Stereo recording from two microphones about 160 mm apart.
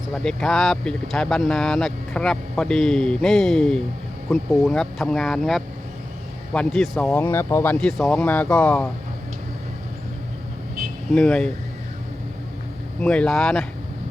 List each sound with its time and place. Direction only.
0.1 s speech: 5° left (ahead or behind)
7.1 s speech: 15° left (ahead or behind)
11.1 s speech: 5° left (ahead or behind)
13.0 s speech: 5° left (ahead or behind)